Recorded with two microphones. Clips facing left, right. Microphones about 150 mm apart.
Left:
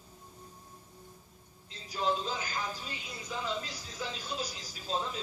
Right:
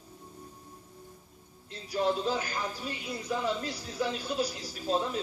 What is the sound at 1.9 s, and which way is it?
Speech, 60° right (ahead or behind).